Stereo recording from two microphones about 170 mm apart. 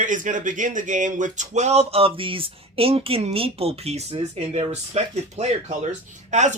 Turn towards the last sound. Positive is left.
turn(degrees=-45)  # may be behind; listen again after turning